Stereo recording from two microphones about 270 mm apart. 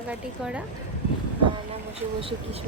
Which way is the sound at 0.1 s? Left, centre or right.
Centre.